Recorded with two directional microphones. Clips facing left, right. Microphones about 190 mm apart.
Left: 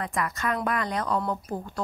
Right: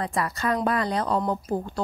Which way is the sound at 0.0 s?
35° right (ahead or behind).